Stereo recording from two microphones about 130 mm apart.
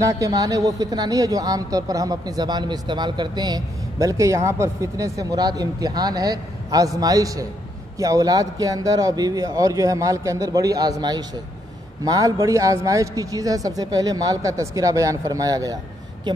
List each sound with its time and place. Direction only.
0.0 s a woman's voice: 25° right (ahead or behind)